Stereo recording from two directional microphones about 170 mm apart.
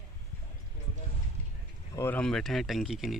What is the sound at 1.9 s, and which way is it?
Speech, 10° left (ahead or behind).